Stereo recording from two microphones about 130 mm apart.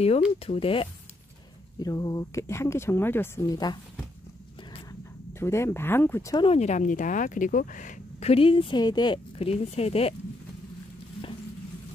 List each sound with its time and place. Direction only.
0.4 s a woman's voice: 45° left (ahead or behind)
1.8 s speech: 30° left (ahead or behind)
5.4 s speech: 20° left (ahead or behind)
6.3 s a woman's voice: 45° left (ahead or behind)
6.6 s speech: 70° left (ahead or behind)
8.3 s speech: 45° left (ahead or behind)
9.4 s a woman's voice: 50° left (ahead or behind)